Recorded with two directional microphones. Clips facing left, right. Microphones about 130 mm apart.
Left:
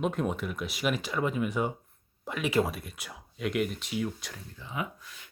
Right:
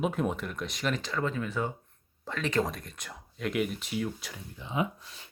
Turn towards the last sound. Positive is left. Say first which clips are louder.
# right 5 dB
turn(degrees=-30)  # may be behind; listen again after turning